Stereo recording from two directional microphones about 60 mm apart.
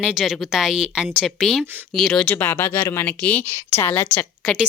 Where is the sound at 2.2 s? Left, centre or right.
Left.